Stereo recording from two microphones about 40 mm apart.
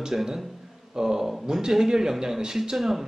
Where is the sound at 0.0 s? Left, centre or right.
Centre.